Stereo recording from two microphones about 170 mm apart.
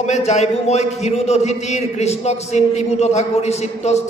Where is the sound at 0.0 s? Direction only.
40° left (ahead or behind).